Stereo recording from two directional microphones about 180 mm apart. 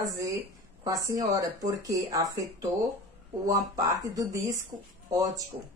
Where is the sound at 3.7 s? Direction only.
20° right (ahead or behind).